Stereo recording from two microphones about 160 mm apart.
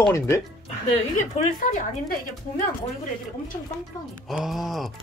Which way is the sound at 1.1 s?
50° left (ahead or behind).